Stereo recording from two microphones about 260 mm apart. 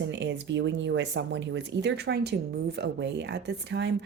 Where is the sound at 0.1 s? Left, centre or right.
Right.